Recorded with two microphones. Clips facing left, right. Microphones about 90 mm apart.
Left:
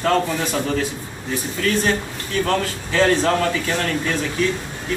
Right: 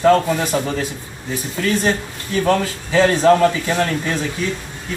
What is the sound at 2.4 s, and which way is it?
A man's voice, 10° right (ahead or behind).